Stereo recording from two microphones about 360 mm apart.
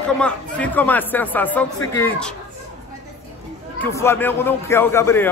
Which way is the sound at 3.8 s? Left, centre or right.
Centre.